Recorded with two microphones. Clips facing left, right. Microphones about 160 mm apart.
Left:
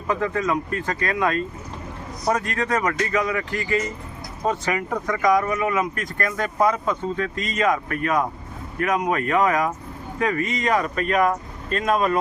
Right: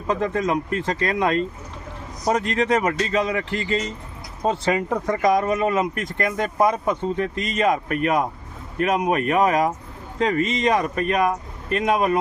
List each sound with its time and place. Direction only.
0.1 s speech: 20° right (ahead or behind)